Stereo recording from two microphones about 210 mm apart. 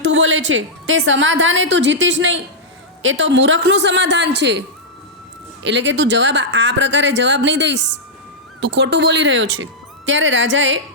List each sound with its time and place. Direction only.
0.0 s a woman's voice: 60° right (ahead or behind)
5.6 s a woman's voice: 60° right (ahead or behind)